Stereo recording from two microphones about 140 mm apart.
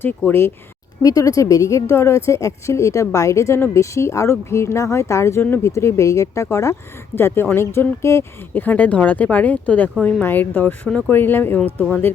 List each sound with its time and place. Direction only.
0.0 s a woman's voice: 15° left (ahead or behind)